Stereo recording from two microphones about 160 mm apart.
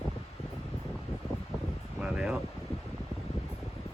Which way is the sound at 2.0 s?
5° right (ahead or behind).